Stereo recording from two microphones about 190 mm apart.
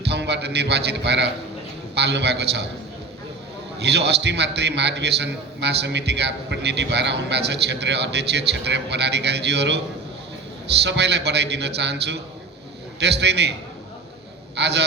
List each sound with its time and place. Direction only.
0.0 s a man's voice: 60° right (ahead or behind)
3.8 s a man's voice: 60° right (ahead or behind)
10.8 s a man's voice: 65° right (ahead or behind)
14.5 s a man's voice: 65° right (ahead or behind)